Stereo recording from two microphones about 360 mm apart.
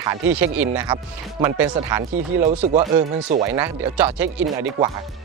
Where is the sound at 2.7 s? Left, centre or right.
Centre.